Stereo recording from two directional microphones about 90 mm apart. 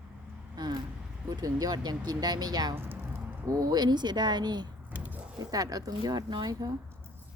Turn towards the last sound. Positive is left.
turn(degrees=-50)  # may be behind; listen again after turning